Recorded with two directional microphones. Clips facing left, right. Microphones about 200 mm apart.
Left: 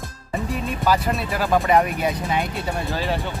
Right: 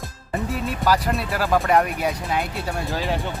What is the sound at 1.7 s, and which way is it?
Speech, centre (ahead or behind).